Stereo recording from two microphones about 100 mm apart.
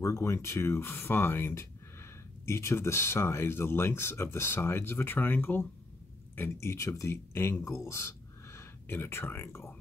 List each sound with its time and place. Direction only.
0.0 s speech: 30° left (ahead or behind)